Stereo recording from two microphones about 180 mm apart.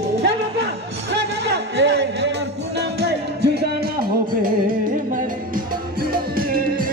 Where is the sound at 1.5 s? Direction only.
85° right.